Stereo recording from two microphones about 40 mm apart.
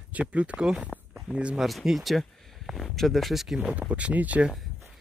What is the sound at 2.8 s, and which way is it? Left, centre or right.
Speech, centre.